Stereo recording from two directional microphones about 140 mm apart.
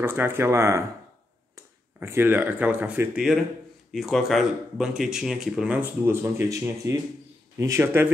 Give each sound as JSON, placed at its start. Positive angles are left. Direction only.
{"t": 0.0, "sound": "speech", "side_deg": -15}
{"t": 6.6, "sound": "speech", "side_deg": -20}